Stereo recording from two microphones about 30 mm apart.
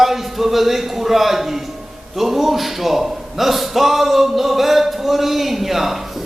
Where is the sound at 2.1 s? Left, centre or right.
Centre.